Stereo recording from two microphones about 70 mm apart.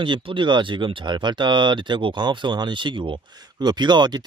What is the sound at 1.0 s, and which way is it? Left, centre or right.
Speech, right.